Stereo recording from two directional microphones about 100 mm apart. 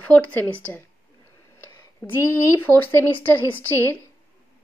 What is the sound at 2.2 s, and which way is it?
Speech, 25° left (ahead or behind).